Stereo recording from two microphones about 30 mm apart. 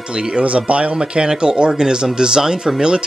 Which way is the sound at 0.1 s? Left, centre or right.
Right.